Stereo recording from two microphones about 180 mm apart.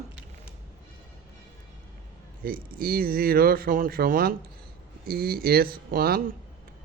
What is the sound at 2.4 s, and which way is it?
Speech, 55° right (ahead or behind).